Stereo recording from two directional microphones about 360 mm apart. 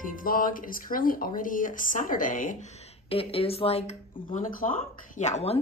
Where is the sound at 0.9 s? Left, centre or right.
Left.